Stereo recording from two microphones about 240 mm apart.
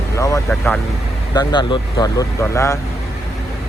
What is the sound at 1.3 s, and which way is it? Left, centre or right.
Speech, centre.